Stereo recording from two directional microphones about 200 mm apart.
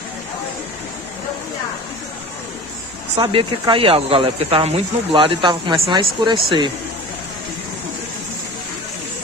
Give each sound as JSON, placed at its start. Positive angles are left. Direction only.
{"t": 3.2, "sound": "speech", "side_deg": -25}